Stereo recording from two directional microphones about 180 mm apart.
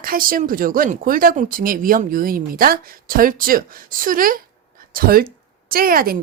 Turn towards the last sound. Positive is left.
turn(degrees=-55)  # may be behind; listen again after turning